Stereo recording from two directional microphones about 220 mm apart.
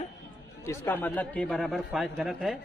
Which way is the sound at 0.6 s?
10° left (ahead or behind).